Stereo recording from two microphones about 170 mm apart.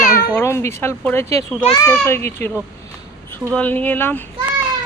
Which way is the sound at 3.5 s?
10° left (ahead or behind).